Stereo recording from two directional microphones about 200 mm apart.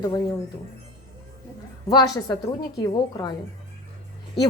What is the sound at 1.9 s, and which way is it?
A woman's voice, 20° left (ahead or behind).